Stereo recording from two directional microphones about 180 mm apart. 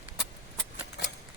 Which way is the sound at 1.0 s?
70° left (ahead or behind).